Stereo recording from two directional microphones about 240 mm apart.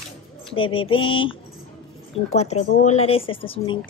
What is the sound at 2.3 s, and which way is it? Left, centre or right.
A child's voice, left.